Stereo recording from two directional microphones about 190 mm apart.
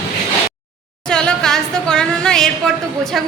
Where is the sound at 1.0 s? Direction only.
5° left (ahead or behind).